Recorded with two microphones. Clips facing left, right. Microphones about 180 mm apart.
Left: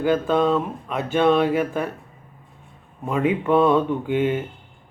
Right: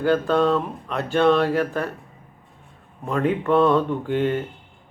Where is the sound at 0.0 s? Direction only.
5° left (ahead or behind).